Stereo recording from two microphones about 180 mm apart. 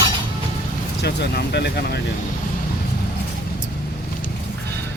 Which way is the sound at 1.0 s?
65° left (ahead or behind).